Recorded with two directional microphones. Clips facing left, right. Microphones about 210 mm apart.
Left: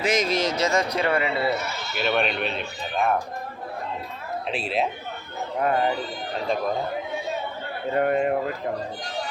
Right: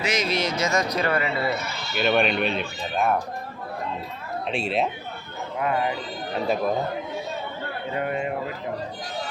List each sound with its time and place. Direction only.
0.0 s speech: 45° left (ahead or behind); by 1.5 s 25° left (ahead or behind)
2.0 s speech: centre (ahead or behind)
4.4 s speech: centre (ahead or behind)
5.5 s a man's voice: 40° left (ahead or behind)
7.9 s speech: 50° left (ahead or behind)